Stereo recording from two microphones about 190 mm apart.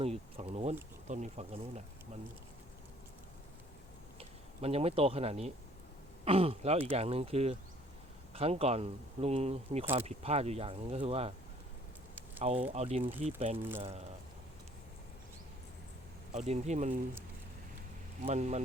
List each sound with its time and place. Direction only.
0.0 s bee: 30° right (ahead or behind)
1.0 s speech: 40° right (ahead or behind)
4.2 s speech: 30° right (ahead or behind)
12.4 s speech: 30° right (ahead or behind)
13.6 s speech: 10° right (ahead or behind)
16.3 s speech: 35° right (ahead or behind)
18.3 s speech: 35° right (ahead or behind)